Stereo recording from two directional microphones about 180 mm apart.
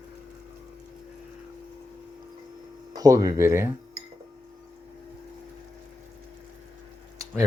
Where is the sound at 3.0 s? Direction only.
20° right (ahead or behind).